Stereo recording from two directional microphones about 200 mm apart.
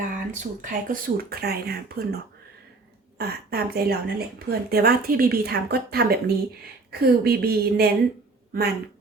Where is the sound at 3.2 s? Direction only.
50° right (ahead or behind).